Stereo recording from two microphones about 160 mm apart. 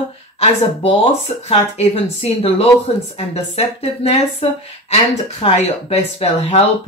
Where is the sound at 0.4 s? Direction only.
40° left (ahead or behind).